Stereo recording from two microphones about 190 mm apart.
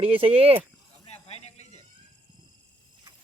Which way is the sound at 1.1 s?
35° left (ahead or behind).